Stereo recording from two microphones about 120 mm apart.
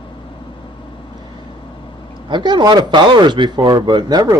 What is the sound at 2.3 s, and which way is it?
Speech, 40° right (ahead or behind).